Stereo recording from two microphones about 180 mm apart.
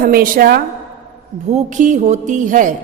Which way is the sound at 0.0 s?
55° right (ahead or behind).